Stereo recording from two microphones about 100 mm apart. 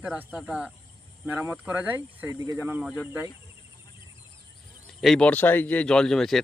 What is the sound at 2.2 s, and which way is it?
Speech, 35° right (ahead or behind).